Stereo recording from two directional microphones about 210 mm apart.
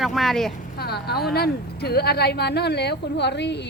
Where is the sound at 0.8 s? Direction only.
50° left (ahead or behind).